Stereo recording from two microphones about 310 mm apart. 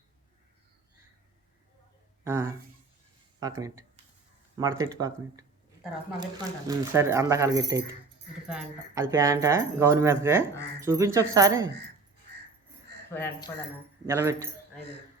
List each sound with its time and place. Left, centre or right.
2.2 s speech: centre
6.7 s speech: centre
11.6 s speech: right
13.1 s speech: centre
14.1 s speech: centre